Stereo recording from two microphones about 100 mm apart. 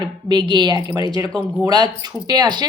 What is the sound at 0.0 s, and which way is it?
A woman's voice, 50° right (ahead or behind).